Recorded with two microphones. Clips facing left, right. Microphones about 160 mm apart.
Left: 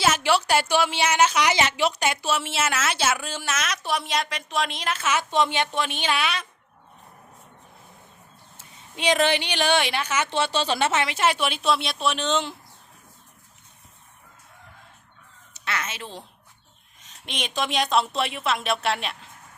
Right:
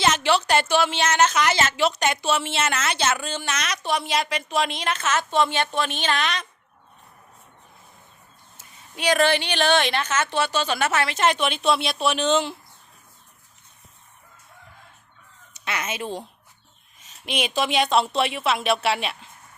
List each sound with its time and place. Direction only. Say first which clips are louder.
0.0 s a woman's voice: right 1 dB; 10° left (ahead or behind)
8.5 s a woman's voice: even; 20° left (ahead or behind)
10.2 s a woman's voice: even; 25° left (ahead or behind)
11.0 s speech: right 2 dB; 10° left (ahead or behind)
15.5 s speech: right 2 dB; 15° right (ahead or behind)